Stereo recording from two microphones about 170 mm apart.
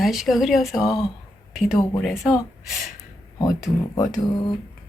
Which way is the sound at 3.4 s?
20° left (ahead or behind).